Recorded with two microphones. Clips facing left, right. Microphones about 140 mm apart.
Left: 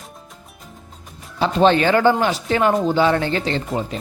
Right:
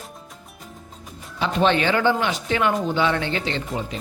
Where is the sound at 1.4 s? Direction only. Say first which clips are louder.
Left 5 dB; 35° left (ahead or behind).